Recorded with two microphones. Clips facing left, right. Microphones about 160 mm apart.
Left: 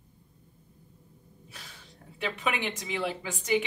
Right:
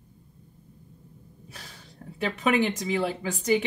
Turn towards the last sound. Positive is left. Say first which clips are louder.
# right 4 dB
turn(degrees=-40)  # may be behind; listen again after turning